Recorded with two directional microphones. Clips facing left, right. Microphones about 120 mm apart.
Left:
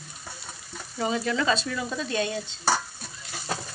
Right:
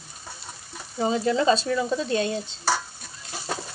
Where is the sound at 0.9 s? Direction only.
30° right (ahead or behind).